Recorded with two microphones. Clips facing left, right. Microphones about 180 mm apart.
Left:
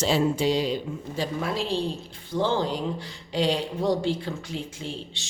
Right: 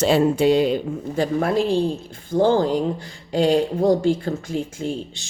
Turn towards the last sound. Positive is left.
turn(degrees=-45)  # may be behind; listen again after turning